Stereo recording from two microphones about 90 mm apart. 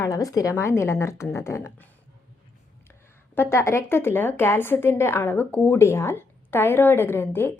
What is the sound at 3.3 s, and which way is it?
A woman's voice, 25° left (ahead or behind).